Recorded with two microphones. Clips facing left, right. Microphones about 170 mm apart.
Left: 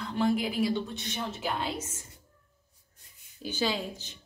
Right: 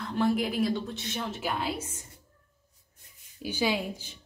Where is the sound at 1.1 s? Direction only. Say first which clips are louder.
Even; 5° right (ahead or behind).